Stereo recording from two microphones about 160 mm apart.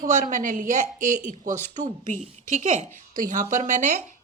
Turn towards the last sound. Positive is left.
turn(degrees=-50)  # may be behind; listen again after turning